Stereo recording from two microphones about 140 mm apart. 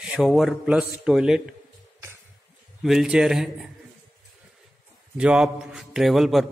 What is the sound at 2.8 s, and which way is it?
Speech, 5° right (ahead or behind).